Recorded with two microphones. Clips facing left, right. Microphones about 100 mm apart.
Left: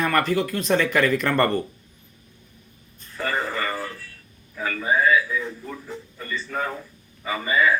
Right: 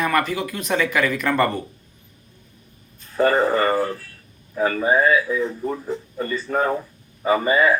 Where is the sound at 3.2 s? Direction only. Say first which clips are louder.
Right 9 dB; 40° right (ahead or behind).